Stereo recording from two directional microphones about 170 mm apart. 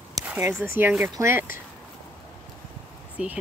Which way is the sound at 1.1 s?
15° right (ahead or behind).